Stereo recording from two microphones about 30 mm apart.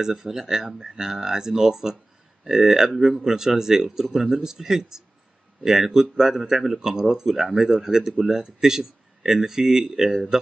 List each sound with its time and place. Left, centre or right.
0.0 s speech: centre